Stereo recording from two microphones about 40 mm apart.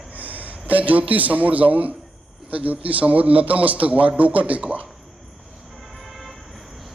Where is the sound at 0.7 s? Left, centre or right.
Right.